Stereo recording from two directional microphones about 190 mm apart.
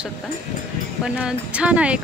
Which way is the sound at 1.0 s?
5° right (ahead or behind).